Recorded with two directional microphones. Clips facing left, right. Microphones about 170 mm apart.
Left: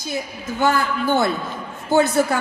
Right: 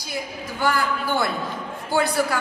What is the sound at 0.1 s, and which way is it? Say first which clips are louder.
A woman's voice: left 3 dB; 25° left (ahead or behind).